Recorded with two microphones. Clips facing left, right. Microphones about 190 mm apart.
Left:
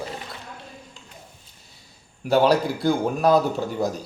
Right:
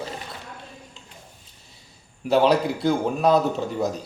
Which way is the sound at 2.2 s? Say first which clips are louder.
Even; centre (ahead or behind).